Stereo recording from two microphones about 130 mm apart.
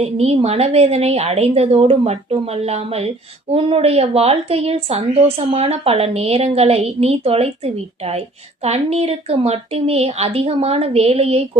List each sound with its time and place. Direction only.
0.0 s a woman's voice: 55° right (ahead or behind)